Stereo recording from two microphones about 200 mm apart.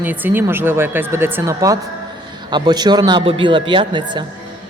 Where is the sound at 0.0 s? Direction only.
10° right (ahead or behind).